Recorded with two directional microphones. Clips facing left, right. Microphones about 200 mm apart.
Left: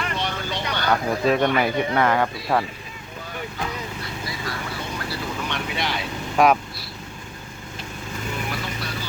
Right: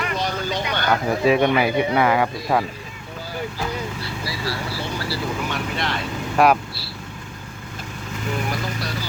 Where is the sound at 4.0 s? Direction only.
30° right (ahead or behind).